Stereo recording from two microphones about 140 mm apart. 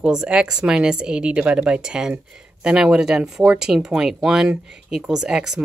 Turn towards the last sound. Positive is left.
turn(degrees=-5)  # may be behind; listen again after turning